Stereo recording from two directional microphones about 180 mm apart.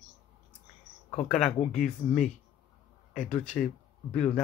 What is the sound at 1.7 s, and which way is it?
Speech, 5° left (ahead or behind).